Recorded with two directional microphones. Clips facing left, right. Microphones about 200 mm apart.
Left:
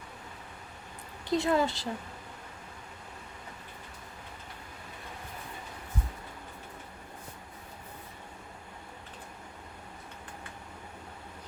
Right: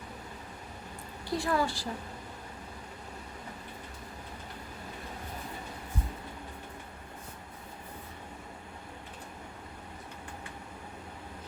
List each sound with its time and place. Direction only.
1.3 s a woman's voice: 20° left (ahead or behind)